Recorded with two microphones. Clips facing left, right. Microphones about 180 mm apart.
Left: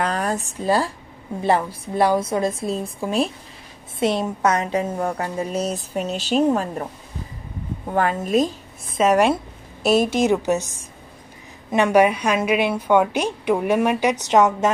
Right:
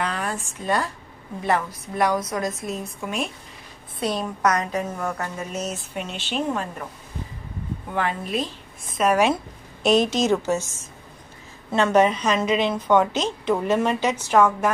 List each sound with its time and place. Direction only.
0.0 s a woman's voice: 40° left (ahead or behind)
7.9 s a woman's voice: 45° left (ahead or behind)
9.1 s a woman's voice: 5° left (ahead or behind); by 14.7 s 20° left (ahead or behind)